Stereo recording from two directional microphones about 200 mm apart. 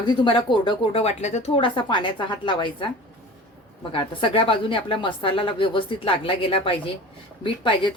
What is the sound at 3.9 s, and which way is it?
A woman's voice, 25° left (ahead or behind).